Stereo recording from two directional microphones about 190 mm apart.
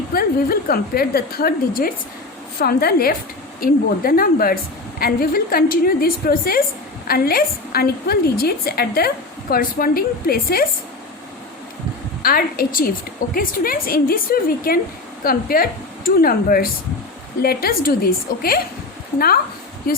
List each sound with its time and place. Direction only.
0.1 s a woman's voice: 55° left (ahead or behind)
12.2 s a woman's voice: 50° left (ahead or behind)